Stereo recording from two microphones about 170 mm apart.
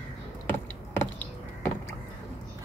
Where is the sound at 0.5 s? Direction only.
15° left (ahead or behind).